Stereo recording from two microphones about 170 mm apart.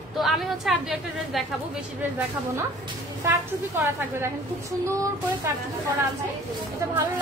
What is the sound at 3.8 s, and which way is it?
A woman's voice, 15° right (ahead or behind).